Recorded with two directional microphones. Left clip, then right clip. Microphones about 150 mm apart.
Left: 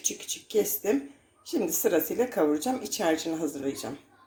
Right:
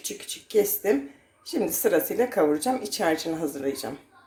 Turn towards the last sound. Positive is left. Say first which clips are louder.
# right 3 dB
turn(degrees=0)  # may be behind; listen again after turning